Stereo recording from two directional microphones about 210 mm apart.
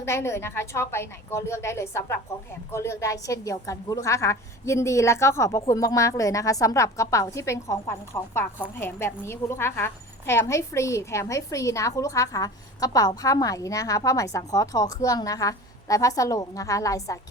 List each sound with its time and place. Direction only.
0.0 s a woman's voice: 10° left (ahead or behind)